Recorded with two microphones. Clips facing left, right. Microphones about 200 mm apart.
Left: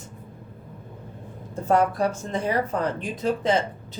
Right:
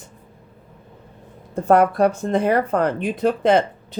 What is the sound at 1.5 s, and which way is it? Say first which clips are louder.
Speech: right 5 dB; 60° right (ahead or behind).